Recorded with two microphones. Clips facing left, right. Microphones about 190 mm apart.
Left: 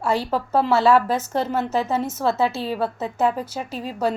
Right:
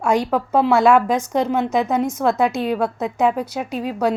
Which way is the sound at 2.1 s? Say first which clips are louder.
Right 3 dB; 15° right (ahead or behind).